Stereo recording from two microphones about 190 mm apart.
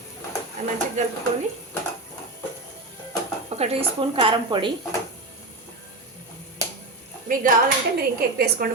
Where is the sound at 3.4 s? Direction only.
35° right (ahead or behind).